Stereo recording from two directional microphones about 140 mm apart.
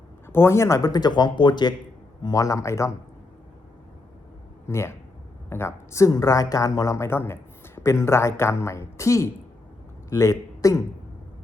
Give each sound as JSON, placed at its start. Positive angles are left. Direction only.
{"t": 0.3, "sound": "a woman's voice", "side_deg": 20}
{"t": 4.7, "sound": "a woman's voice", "side_deg": 20}